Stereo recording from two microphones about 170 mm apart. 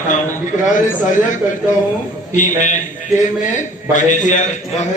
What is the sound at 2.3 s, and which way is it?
Speech, 45° left (ahead or behind).